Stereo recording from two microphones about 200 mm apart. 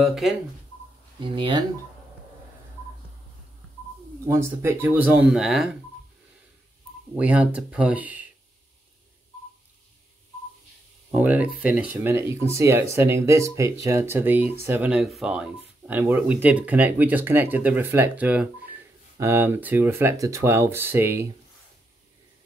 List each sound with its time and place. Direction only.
0.0 s speech: centre (ahead or behind)
1.2 s speech: 25° right (ahead or behind)
4.3 s speech: 15° right (ahead or behind)
7.2 s speech: 5° right (ahead or behind)
11.1 s speech: 10° right (ahead or behind)